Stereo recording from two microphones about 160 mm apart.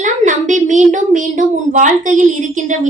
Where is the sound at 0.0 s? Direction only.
50° right (ahead or behind).